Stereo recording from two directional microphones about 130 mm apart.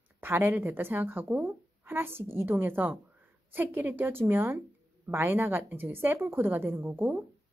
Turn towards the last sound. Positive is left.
turn(degrees=-15)  # may be behind; listen again after turning